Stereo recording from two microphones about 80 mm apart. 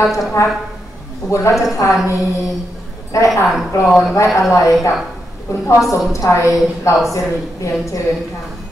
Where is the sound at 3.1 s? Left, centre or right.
Left.